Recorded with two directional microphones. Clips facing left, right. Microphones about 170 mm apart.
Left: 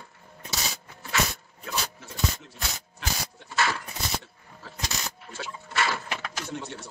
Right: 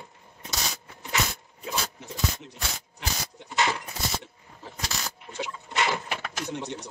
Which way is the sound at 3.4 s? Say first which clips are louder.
Right 1 dB; 20° right (ahead or behind).